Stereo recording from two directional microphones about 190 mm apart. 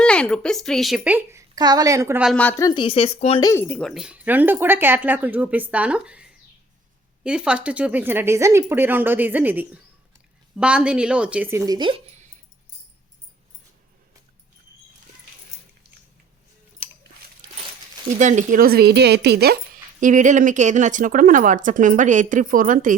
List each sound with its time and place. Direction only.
0.0 s speech: 5° left (ahead or behind); by 2.2 s 15° right (ahead or behind)
2.2 s a woman's voice: 5° left (ahead or behind)
2.6 s speech: 25° left (ahead or behind)
3.4 s speech: 15° left (ahead or behind); by 6.2 s 5° right (ahead or behind)
7.3 s speech: 5° right (ahead or behind); by 11.9 s 20° right (ahead or behind)
18.2 s speech: 40° right (ahead or behind)